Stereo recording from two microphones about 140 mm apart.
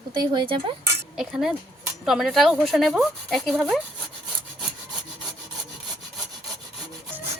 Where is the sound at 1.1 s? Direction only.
5° right (ahead or behind).